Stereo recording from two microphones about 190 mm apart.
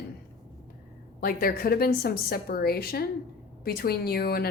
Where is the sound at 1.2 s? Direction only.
50° left (ahead or behind).